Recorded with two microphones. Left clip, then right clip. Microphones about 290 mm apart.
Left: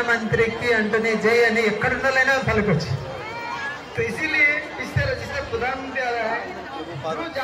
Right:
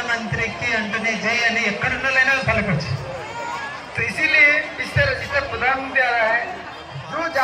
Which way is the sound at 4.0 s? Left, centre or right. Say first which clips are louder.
Right 4 dB; centre.